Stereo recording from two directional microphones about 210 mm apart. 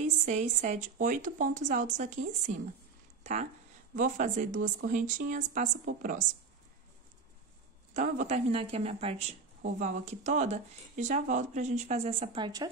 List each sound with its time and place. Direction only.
0.2 s speech: 35° right (ahead or behind)
3.9 s speech: 35° right (ahead or behind)
7.9 s speech: 35° right (ahead or behind)
9.6 s speech: 40° right (ahead or behind); by 12.6 s 20° right (ahead or behind)